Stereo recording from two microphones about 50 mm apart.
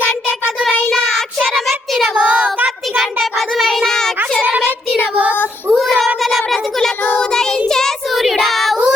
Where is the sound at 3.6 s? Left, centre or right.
Centre.